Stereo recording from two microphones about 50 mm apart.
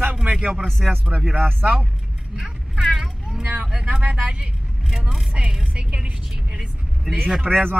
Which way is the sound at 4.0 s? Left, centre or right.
Right.